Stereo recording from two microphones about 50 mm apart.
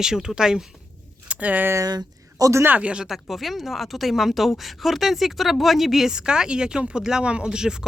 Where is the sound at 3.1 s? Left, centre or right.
Centre.